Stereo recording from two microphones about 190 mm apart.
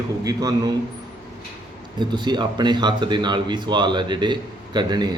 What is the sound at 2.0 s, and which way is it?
Speech, 25° right (ahead or behind).